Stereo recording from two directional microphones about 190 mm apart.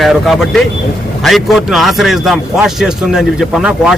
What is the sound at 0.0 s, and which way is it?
A man's voice, centre (ahead or behind).